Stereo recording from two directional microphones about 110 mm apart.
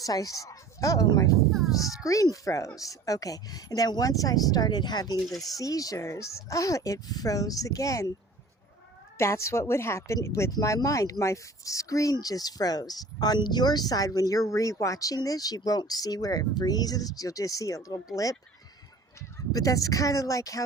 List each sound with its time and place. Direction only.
0.0 s a woman's voice: 35° left (ahead or behind)
5.2 s speech: centre (ahead or behind)
5.5 s speech: 35° left (ahead or behind)
9.1 s a woman's voice: 25° left (ahead or behind)
19.5 s speech: 30° left (ahead or behind)